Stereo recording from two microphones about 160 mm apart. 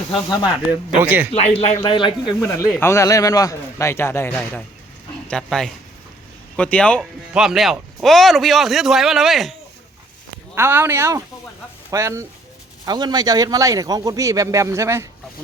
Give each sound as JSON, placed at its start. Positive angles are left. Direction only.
{"t": 0.4, "sound": "a man's voice", "side_deg": -10}
{"t": 1.3, "sound": "speech", "side_deg": 40}
{"t": 2.4, "sound": "a man's voice", "side_deg": 10}
{"t": 10.5, "sound": "a man's voice", "side_deg": -15}